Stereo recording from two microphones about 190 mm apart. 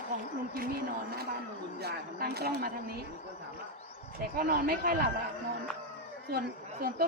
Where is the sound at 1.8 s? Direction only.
60° right (ahead or behind).